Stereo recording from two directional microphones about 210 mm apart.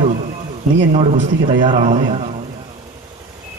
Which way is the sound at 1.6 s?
25° right (ahead or behind).